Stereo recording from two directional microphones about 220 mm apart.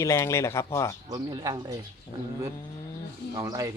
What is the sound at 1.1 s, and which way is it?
Speech, 15° right (ahead or behind).